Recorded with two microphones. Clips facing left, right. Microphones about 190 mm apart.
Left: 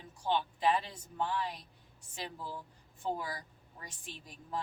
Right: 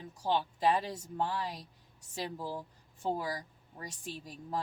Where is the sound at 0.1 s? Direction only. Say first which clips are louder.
Right 1 dB; 40° right (ahead or behind).